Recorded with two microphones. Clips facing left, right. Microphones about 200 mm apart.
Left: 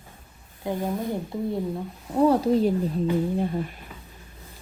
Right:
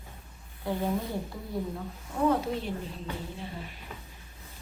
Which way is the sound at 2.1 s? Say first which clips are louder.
Left 7 dB; 35° left (ahead or behind).